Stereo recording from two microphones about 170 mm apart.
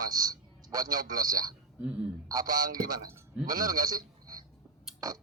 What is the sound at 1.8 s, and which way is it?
Speech, 5° right (ahead or behind).